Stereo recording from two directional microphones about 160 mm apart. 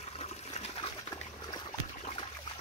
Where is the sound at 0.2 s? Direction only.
40° left (ahead or behind).